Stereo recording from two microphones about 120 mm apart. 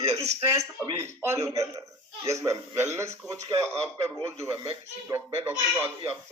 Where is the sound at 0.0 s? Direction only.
65° right (ahead or behind).